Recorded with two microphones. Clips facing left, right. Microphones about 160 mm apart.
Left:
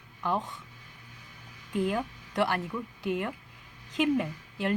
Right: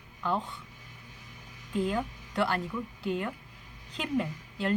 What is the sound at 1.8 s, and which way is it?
Speech, 10° left (ahead or behind).